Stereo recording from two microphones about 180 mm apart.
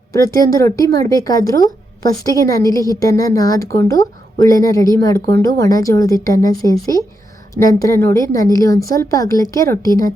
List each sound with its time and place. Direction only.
0.1 s a woman's voice: 20° left (ahead or behind)